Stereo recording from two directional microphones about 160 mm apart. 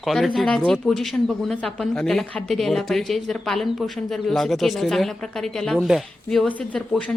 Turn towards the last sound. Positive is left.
turn(degrees=5)  # may be behind; listen again after turning